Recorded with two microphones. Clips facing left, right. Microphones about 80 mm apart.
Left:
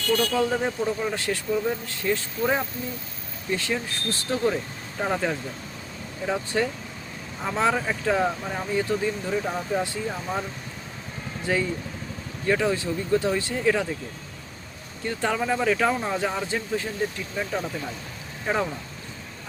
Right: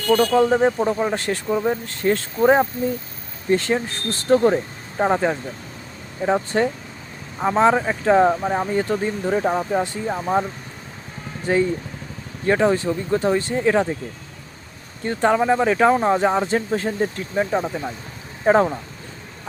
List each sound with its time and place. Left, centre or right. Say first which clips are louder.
0.1 s speech: right 7 dB; right
11.5 s speech: right 6 dB; right
15.0 s speech: right 8 dB; right
17.3 s speech: right 7 dB; right
18.4 s speech: right 10 dB; right